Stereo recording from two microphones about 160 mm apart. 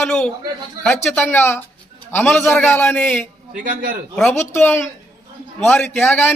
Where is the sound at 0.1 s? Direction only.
5° left (ahead or behind).